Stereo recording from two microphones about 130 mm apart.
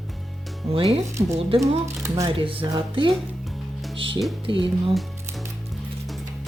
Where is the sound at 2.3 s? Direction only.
45° right (ahead or behind).